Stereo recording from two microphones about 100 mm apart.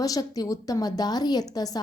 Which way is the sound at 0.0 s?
35° left (ahead or behind).